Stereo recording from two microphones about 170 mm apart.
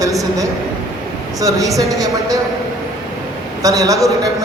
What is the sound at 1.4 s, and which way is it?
Speech, 20° right (ahead or behind).